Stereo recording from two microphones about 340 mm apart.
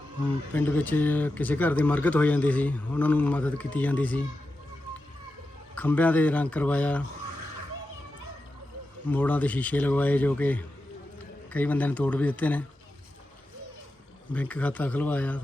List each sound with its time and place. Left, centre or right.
0.5 s speech: centre
5.7 s speech: centre
9.0 s speech: centre
14.3 s speech: centre